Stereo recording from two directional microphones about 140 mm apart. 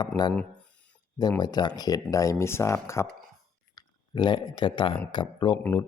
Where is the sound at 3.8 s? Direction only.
30° left (ahead or behind).